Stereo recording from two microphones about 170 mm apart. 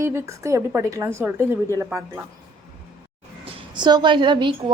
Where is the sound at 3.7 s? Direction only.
25° right (ahead or behind).